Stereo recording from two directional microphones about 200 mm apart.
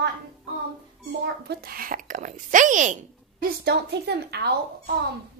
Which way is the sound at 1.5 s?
50° right (ahead or behind).